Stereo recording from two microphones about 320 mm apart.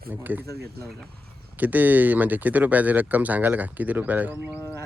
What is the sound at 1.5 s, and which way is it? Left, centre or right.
Speech, centre.